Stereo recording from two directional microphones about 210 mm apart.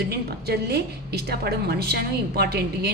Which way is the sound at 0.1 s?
50° right (ahead or behind).